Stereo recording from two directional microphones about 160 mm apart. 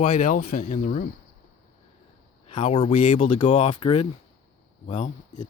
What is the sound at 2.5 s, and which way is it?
Speech, 35° left (ahead or behind).